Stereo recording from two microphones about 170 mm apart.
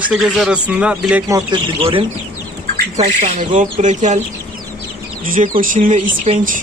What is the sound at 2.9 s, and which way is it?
Speech, 45° right (ahead or behind).